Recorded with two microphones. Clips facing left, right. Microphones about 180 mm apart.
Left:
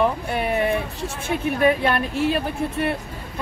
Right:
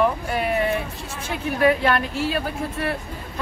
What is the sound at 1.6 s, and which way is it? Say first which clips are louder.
Speech: right 2 dB; 25° left (ahead or behind).